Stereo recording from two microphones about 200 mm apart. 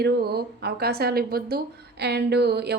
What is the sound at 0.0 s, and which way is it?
Speech, 55° right (ahead or behind).